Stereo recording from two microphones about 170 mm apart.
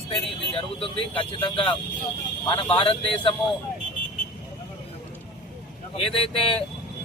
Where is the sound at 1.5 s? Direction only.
30° left (ahead or behind).